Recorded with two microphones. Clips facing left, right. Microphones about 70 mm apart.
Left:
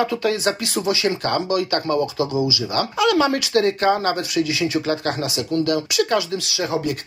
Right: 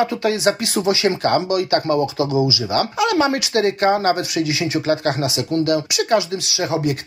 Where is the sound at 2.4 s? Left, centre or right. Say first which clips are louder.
Right 3 dB; right.